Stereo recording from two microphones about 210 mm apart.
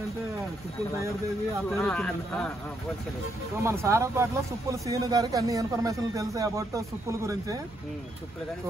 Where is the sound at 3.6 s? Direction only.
15° right (ahead or behind).